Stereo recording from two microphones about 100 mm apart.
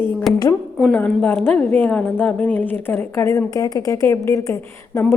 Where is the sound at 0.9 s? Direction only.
15° left (ahead or behind).